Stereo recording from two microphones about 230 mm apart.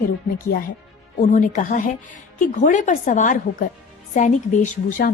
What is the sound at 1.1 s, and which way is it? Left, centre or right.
A woman's voice, left.